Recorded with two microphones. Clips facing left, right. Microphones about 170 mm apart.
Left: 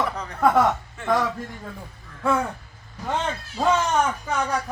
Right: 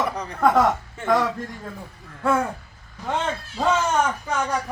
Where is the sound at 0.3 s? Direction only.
5° left (ahead or behind).